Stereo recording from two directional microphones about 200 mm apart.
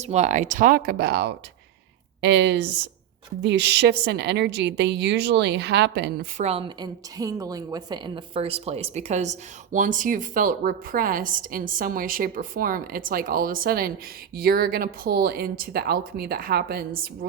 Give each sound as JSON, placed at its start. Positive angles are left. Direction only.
{"t": 0.0, "sound": "a woman's voice", "side_deg": -35}
{"t": 6.3, "sound": "a woman's voice", "side_deg": -30}